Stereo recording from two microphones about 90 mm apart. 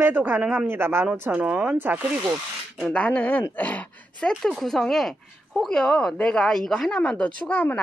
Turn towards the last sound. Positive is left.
turn(degrees=10)  # may be behind; listen again after turning